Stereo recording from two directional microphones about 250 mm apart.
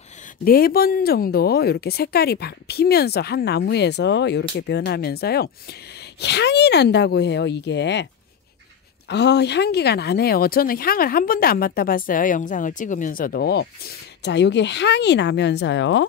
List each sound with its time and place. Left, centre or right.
0.5 s speech: left
9.1 s speech: left